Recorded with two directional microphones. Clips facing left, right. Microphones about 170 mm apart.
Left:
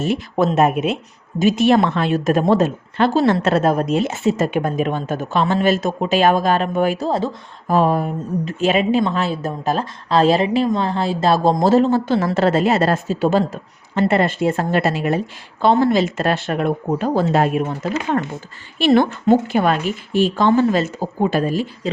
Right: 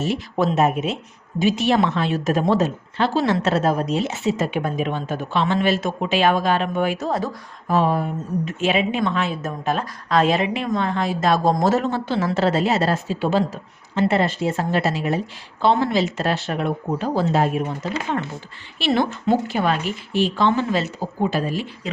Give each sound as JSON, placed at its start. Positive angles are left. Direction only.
{"t": 0.0, "sound": "a woman's voice", "side_deg": 50}
{"t": 7.7, "sound": "a woman's voice", "side_deg": 45}
{"t": 15.6, "sound": "a woman's voice", "side_deg": 45}
{"t": 18.8, "sound": "a woman's voice", "side_deg": 50}